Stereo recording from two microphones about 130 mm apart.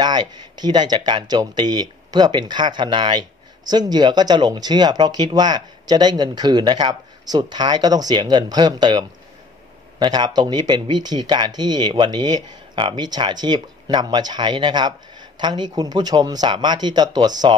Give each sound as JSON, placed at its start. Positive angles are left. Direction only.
{"t": 0.0, "sound": "speech", "side_deg": -35}